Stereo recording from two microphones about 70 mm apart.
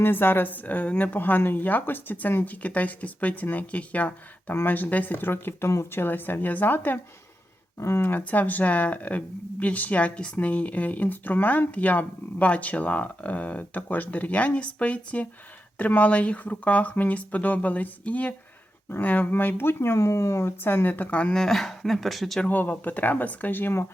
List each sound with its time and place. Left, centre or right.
0.0 s speech: left
7.8 s speech: left
8.1 s speech: left
21.3 s speech: centre
22.4 s speech: left